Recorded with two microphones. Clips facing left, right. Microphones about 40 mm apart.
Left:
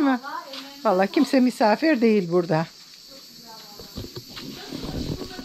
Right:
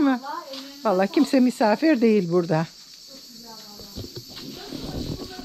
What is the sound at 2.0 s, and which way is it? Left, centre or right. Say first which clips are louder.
Speech: even; left.